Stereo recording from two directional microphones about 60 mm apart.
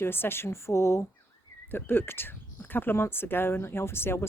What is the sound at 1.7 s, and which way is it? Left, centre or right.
Speech, left.